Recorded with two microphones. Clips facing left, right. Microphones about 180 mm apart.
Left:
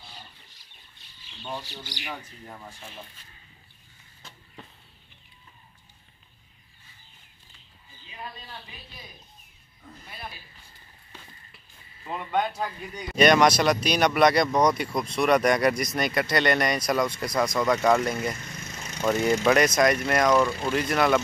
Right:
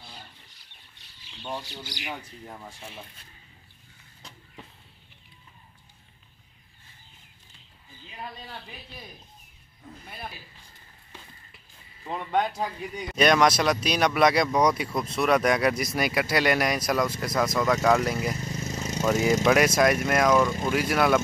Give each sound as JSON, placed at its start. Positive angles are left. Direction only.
{"t": 1.4, "sound": "speech", "side_deg": -5}
{"t": 13.1, "sound": "speech", "side_deg": 0}
{"t": 18.4, "sound": "vehicle", "side_deg": -35}
{"t": 19.0, "sound": "speech", "side_deg": -5}